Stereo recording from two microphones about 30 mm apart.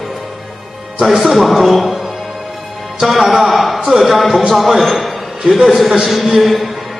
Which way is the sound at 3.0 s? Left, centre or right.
Centre.